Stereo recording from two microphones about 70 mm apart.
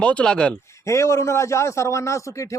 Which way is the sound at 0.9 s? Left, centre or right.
Left.